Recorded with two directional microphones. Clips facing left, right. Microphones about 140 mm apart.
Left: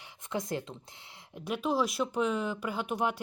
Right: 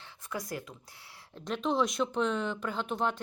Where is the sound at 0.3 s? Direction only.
25° left (ahead or behind).